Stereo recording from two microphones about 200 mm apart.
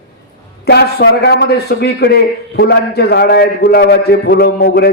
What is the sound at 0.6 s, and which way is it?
A man's voice, 55° left (ahead or behind).